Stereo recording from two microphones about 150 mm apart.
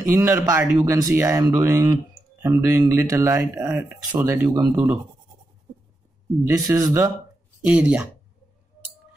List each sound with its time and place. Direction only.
0.0 s a man's voice: 20° right (ahead or behind)
6.4 s speech: 20° right (ahead or behind)
7.6 s a man's voice: 10° right (ahead or behind)